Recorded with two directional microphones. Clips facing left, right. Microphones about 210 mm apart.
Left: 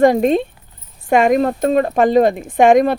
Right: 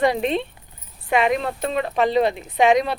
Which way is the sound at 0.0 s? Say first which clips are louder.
Left 8 dB; 45° left (ahead or behind).